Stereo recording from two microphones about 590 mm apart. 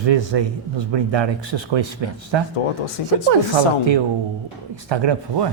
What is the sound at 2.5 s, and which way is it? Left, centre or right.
Speech, left.